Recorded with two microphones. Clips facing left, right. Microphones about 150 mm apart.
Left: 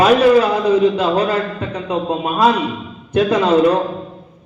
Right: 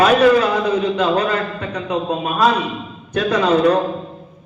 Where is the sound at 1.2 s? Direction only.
30° left (ahead or behind).